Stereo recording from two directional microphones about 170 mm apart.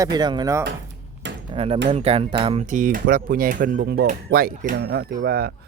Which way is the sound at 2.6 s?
50° right (ahead or behind).